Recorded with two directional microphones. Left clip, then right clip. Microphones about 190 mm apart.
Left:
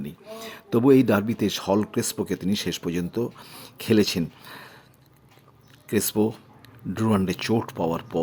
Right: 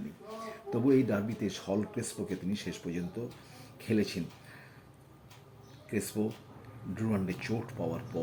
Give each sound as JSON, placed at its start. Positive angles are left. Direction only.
{"t": 0.4, "sound": "speech", "side_deg": 35}
{"t": 5.9, "sound": "speech", "side_deg": 35}